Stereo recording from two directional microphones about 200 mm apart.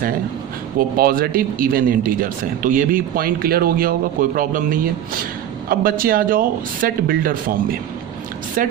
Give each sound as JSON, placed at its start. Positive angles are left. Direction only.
{"t": 0.8, "sound": "speech", "side_deg": -45}